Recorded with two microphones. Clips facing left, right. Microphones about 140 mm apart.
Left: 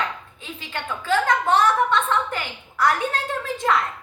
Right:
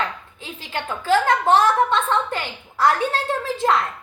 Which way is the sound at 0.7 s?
35° right (ahead or behind).